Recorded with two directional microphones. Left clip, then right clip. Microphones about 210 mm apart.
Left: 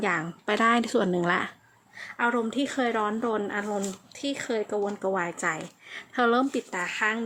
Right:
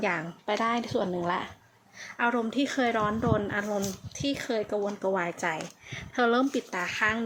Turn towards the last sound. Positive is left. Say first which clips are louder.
# even
turn(degrees=5)  # may be behind; listen again after turning